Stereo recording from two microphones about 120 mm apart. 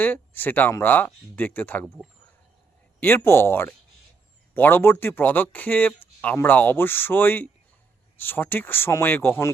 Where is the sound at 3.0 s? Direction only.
20° left (ahead or behind).